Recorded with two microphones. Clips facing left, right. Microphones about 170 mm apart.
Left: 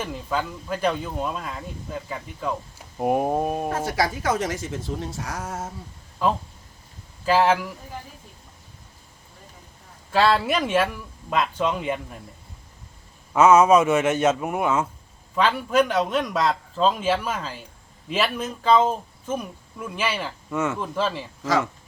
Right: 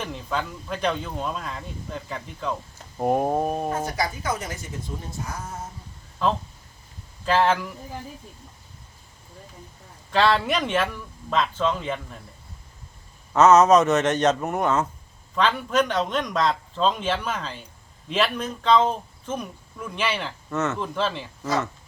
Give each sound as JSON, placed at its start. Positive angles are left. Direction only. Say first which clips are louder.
{"t": 0.0, "sound": "speech", "louder": "left 2 dB", "side_deg": 5}
{"t": 3.8, "sound": "a woman's voice", "louder": "left 4 dB", "side_deg": 90}
{"t": 6.2, "sound": "speech", "louder": "left 1 dB", "side_deg": 10}
{"t": 10.1, "sound": "speech", "louder": "left 1 dB", "side_deg": 5}
{"t": 13.3, "sound": "speech", "louder": "even", "side_deg": 10}